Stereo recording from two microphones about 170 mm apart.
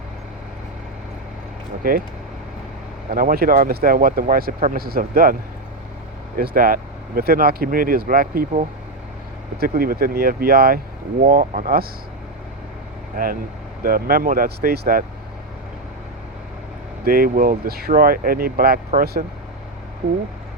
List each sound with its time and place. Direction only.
1.8 s speech: 60° right (ahead or behind)
3.1 s speech: 60° right (ahead or behind)
13.8 s speech: 60° right (ahead or behind)
17.0 s speech: 60° right (ahead or behind)